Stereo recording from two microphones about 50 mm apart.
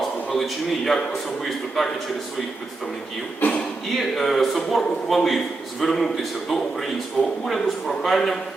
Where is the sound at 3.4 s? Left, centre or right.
Left.